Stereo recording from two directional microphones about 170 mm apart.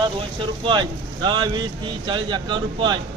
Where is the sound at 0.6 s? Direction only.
25° right (ahead or behind).